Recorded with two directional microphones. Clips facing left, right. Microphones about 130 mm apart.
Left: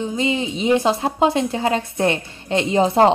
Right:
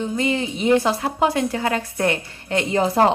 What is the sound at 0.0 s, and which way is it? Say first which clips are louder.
A woman's voice: left 1 dB; 20° left (ahead or behind).